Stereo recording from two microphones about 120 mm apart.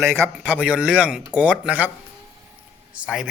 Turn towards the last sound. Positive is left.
turn(degrees=-5)  # may be behind; listen again after turning